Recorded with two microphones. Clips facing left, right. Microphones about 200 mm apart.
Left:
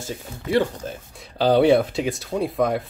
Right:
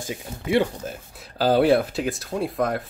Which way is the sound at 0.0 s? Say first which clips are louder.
Even; 15° right (ahead or behind).